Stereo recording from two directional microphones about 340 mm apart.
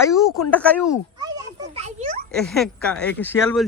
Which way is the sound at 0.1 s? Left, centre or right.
Centre.